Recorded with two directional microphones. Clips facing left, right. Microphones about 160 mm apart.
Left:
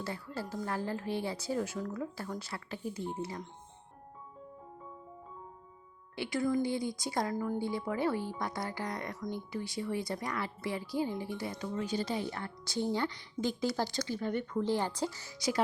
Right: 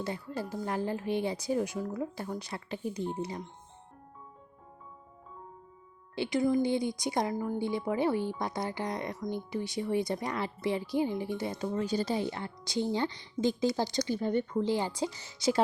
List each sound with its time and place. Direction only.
0.0 s a woman's voice: 15° right (ahead or behind)
6.1 s speech: 20° right (ahead or behind)
11.7 s speech: 35° right (ahead or behind)
14.5 s a woman's voice: 15° right (ahead or behind)